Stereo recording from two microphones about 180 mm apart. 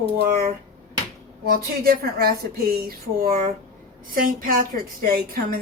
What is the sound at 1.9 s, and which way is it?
A woman's voice, 55° right (ahead or behind).